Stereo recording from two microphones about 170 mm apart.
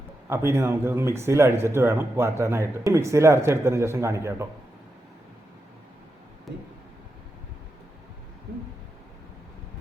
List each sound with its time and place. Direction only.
0.3 s speech: 15° right (ahead or behind)